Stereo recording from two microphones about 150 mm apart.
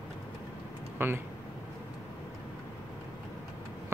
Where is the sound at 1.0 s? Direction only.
15° right (ahead or behind).